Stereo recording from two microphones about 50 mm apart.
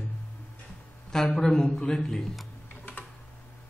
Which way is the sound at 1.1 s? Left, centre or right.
Centre.